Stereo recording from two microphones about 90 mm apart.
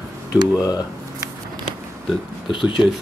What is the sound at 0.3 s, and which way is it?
Speech, 40° left (ahead or behind).